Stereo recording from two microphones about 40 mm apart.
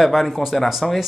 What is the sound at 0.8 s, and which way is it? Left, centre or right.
Speech, centre.